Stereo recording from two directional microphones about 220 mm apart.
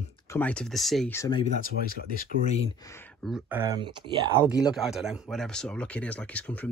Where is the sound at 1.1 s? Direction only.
15° left (ahead or behind).